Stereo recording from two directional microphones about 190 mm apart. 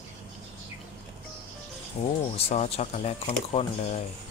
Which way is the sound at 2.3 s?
30° left (ahead or behind).